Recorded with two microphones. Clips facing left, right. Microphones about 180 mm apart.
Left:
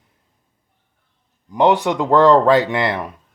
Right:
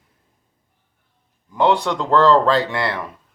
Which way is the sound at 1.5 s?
15° left (ahead or behind).